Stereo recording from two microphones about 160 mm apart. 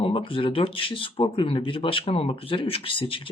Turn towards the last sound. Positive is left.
turn(degrees=35)  # may be behind; listen again after turning